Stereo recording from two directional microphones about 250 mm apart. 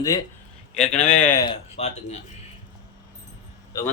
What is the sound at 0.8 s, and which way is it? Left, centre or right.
A man's voice, left.